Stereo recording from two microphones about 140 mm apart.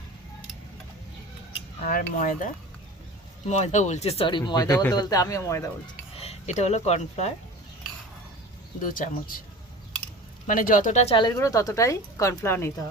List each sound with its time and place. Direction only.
1.8 s cutlery: 85° left; by 2.5 s 70° left (ahead or behind)
3.4 s speech: 55° left (ahead or behind); by 5.7 s 20° left (ahead or behind)
6.1 s speech: 50° left (ahead or behind)
8.8 s speech: 80° left
10.4 s speech: 75° left (ahead or behind); by 11.1 s 60° left (ahead or behind)
11.1 s speech: 35° left (ahead or behind)
11.3 s speech: 25° left (ahead or behind)